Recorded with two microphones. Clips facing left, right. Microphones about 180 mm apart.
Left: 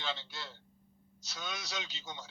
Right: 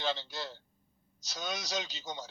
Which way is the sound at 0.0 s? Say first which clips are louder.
Right 6 dB; 40° right (ahead or behind).